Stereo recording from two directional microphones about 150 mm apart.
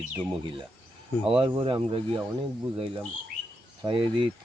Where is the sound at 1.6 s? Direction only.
35° right (ahead or behind).